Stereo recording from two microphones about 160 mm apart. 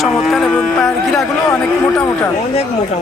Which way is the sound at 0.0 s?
Centre (ahead or behind).